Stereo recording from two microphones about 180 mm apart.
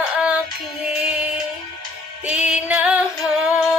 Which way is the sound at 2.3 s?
5° right (ahead or behind).